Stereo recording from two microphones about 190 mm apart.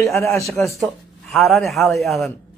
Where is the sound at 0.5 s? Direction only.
Centre (ahead or behind).